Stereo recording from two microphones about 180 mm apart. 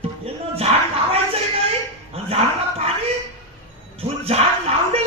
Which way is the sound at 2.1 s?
35° right (ahead or behind).